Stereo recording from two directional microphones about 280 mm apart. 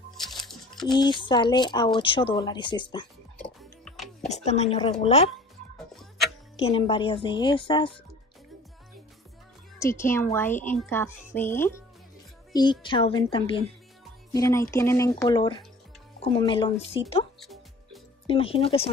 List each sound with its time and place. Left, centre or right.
0.2 s music: centre
0.8 s a woman's voice: centre
3.3 s music: centre
4.3 s speech: left
5.9 s music: centre
6.6 s a woman's voice: centre
9.8 s a woman's voice: centre
17.4 s music: centre
18.2 s speech: centre